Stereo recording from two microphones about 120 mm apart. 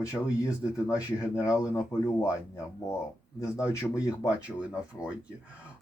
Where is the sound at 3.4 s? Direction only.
25° left (ahead or behind).